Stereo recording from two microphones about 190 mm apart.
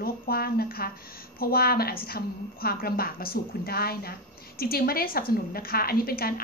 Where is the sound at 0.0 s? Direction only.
50° left (ahead or behind).